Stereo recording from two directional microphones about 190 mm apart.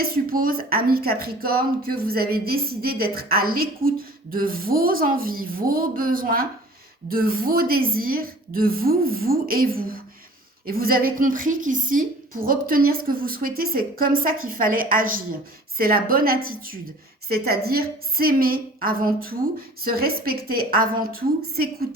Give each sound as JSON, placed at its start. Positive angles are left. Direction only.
{"t": 0.0, "sound": "a woman's voice", "side_deg": -50}